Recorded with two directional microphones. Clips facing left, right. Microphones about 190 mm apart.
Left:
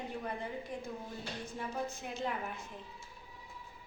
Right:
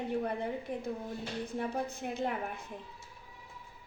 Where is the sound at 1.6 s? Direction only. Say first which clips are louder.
Right 4 dB; 55° right (ahead or behind).